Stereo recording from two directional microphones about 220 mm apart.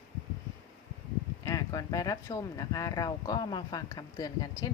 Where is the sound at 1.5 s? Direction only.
15° left (ahead or behind).